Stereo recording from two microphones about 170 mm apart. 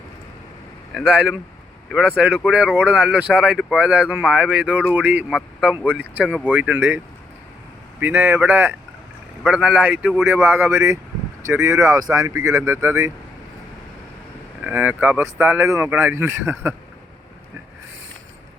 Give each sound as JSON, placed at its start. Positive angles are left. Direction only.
{"t": 0.9, "sound": "speech", "side_deg": -5}
{"t": 14.6, "sound": "speech", "side_deg": -10}